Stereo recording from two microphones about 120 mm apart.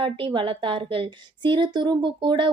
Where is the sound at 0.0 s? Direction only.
45° right (ahead or behind).